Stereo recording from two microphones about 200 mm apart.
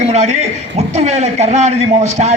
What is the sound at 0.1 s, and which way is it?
A man's voice, 35° right (ahead or behind).